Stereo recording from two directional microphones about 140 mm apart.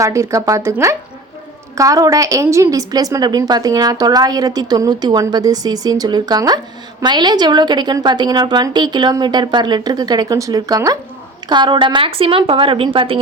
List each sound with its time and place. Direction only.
0.0 s a woman's voice: 20° right (ahead or behind)
1.7 s a woman's voice: 25° right (ahead or behind)